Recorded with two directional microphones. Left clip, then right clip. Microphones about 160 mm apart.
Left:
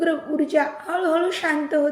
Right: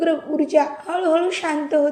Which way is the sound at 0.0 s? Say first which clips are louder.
Right 2 dB; 10° right (ahead or behind).